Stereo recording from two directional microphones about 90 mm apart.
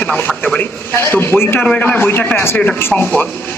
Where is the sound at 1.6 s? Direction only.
15° left (ahead or behind).